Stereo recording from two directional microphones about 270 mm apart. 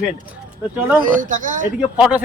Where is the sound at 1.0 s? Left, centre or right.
Right.